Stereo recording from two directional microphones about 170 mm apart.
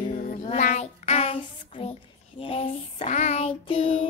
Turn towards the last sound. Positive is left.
turn(degrees=30)  # may be behind; listen again after turning